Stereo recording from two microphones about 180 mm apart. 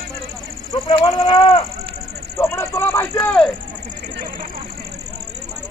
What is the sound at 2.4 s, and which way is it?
Speech, 15° left (ahead or behind).